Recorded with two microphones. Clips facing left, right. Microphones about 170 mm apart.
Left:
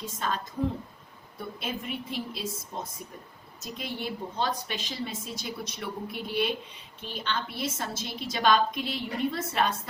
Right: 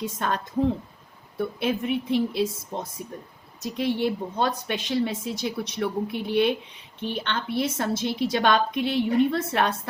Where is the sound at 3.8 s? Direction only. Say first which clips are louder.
Right 10 dB; 60° right (ahead or behind).